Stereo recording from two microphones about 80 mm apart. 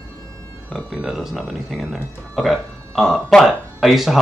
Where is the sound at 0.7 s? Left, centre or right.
Centre.